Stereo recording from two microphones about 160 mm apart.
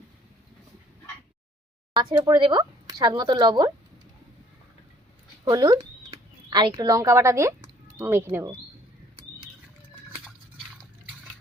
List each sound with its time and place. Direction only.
1.9 s speech: 25° right (ahead or behind)
5.5 s speech: 25° right (ahead or behind)